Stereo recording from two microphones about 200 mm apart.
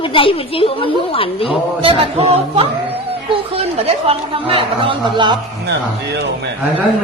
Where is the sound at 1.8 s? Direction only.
30° right (ahead or behind).